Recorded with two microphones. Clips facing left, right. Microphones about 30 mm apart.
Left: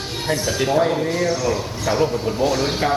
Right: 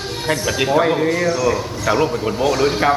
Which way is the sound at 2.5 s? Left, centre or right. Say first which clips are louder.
Right 4 dB; centre.